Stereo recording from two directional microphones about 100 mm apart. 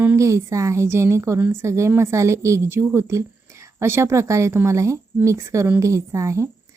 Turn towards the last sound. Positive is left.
turn(degrees=-30)  # may be behind; listen again after turning